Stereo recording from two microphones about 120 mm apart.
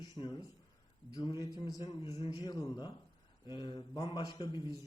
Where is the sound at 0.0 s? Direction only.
40° left (ahead or behind).